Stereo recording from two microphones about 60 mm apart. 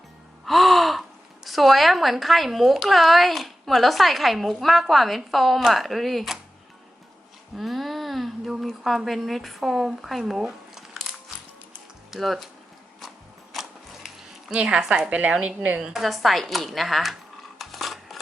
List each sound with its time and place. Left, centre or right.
0.4 s gasp: centre
1.5 s a woman's voice: centre
7.5 s a sound: centre
8.5 s a woman's voice: centre
12.1 s a woman's voice: centre
13.5 s a sound: centre
14.5 s a woman's voice: centre
15.4 s a woman's voice: right
15.9 s a woman's voice: centre
17.6 s a sound: centre